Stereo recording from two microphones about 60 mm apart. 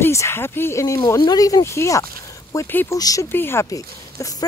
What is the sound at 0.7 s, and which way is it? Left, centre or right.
Speech, left.